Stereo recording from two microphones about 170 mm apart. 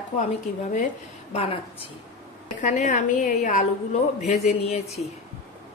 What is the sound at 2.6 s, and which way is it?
A woman's voice, 45° left (ahead or behind).